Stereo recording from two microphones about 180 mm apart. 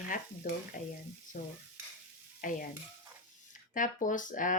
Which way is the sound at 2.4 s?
50° left (ahead or behind).